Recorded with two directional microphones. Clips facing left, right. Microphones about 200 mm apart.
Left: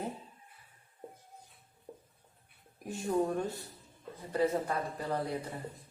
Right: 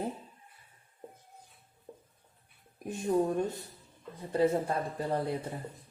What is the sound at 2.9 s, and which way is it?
A woman's voice, 15° right (ahead or behind).